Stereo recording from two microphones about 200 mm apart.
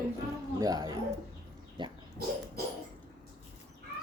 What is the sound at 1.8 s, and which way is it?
Dog, 25° right (ahead or behind).